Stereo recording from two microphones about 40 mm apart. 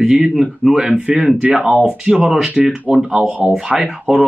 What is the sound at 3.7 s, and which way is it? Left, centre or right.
Speech, centre.